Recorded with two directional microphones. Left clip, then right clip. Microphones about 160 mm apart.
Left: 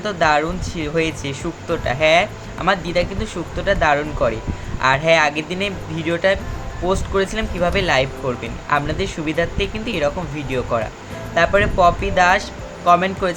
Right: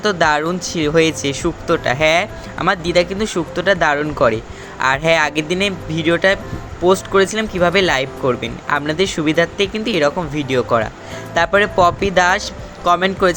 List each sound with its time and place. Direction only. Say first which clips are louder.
0.0 s speech: right 2 dB; 45° right (ahead or behind)